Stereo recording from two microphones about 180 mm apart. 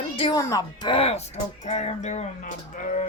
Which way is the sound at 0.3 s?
20° left (ahead or behind).